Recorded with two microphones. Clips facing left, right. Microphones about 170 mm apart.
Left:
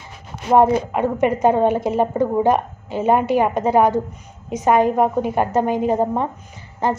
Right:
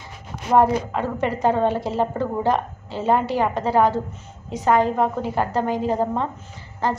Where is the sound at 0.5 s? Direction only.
20° left (ahead or behind).